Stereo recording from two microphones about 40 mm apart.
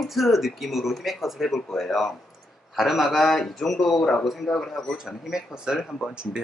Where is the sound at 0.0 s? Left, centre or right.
Centre.